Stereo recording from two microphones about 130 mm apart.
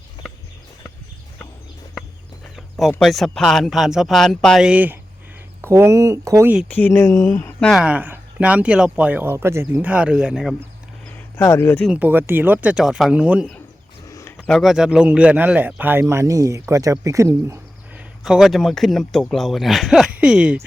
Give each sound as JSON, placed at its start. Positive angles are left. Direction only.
{"t": 2.6, "sound": "a sound", "side_deg": 0}
{"t": 3.0, "sound": "a man's voice", "side_deg": 0}
{"t": 6.7, "sound": "speech", "side_deg": 15}
{"t": 7.7, "sound": "speech", "side_deg": -5}
{"t": 11.3, "sound": "speech", "side_deg": 20}
{"t": 11.9, "sound": "speech", "side_deg": -15}
{"t": 14.1, "sound": "a sound", "side_deg": 25}
{"t": 14.3, "sound": "speech", "side_deg": 5}
{"t": 17.9, "sound": "a man's voice", "side_deg": -5}